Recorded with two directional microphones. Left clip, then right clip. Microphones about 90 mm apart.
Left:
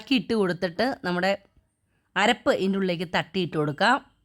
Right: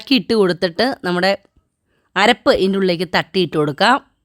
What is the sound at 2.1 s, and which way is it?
Speech, 65° right (ahead or behind).